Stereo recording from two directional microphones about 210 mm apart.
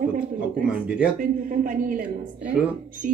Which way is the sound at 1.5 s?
40° right (ahead or behind).